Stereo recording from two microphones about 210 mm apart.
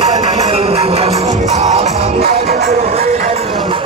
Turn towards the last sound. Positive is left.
turn(degrees=-30)  # may be behind; listen again after turning